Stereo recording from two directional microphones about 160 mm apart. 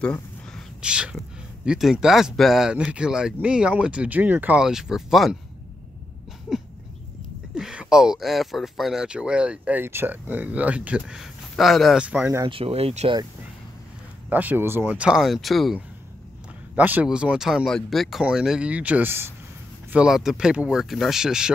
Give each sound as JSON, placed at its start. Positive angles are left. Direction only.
{"t": 0.0, "sound": "a sound", "side_deg": 5}
{"t": 0.8, "sound": "speech", "side_deg": -5}
{"t": 7.5, "sound": "speech", "side_deg": -5}
{"t": 12.4, "sound": "speech", "side_deg": -35}
{"t": 14.3, "sound": "speech", "side_deg": -10}